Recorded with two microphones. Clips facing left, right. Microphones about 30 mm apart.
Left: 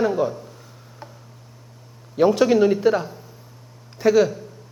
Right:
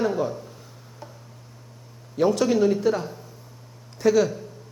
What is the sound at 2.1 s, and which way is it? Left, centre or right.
A man's voice, centre.